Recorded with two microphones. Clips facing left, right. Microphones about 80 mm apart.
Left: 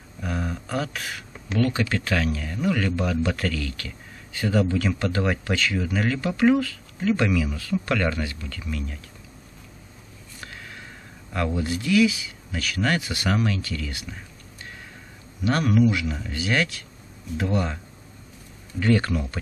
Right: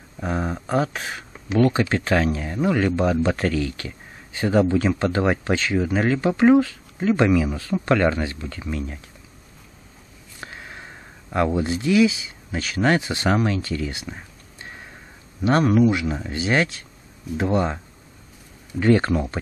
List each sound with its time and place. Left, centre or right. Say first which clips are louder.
0.2 s speech: right 4 dB; right
10.4 s speech: right 3 dB; right
18.8 s speech: right 4 dB; right